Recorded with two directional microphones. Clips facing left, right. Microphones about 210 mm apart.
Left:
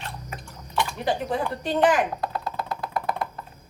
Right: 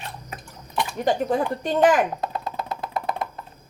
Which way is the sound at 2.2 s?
20° right (ahead or behind).